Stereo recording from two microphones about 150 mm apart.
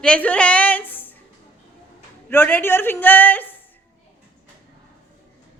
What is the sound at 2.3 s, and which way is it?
A man's voice, 15° left (ahead or behind).